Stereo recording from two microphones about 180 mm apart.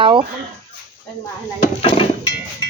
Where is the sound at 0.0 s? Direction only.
25° right (ahead or behind).